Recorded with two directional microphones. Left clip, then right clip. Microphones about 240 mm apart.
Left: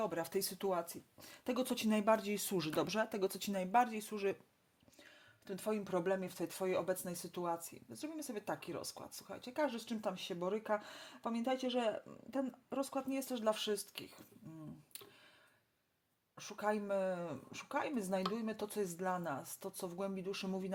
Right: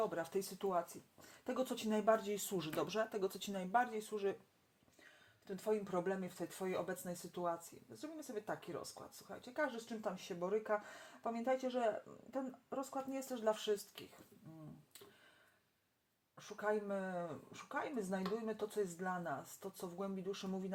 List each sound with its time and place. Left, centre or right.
0.1 s speech: left
5.5 s speech: left
16.3 s speech: left